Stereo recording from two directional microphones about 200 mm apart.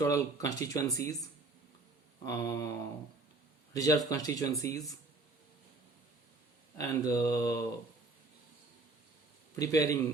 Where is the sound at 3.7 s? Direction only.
15° left (ahead or behind).